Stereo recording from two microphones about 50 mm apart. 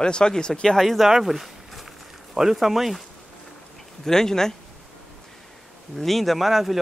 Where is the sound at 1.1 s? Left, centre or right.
Centre.